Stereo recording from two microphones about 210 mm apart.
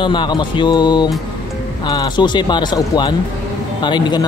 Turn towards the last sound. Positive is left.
turn(degrees=20)  # may be behind; listen again after turning